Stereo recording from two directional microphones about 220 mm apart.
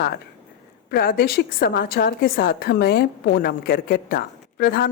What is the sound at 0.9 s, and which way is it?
A woman's voice, 40° left (ahead or behind).